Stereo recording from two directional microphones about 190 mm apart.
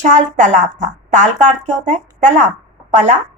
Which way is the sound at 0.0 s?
40° right (ahead or behind).